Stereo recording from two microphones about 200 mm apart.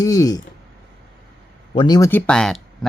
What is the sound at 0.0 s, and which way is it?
Speech, 20° left (ahead or behind).